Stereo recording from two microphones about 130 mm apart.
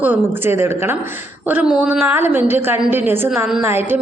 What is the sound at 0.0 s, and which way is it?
Speech, 15° right (ahead or behind).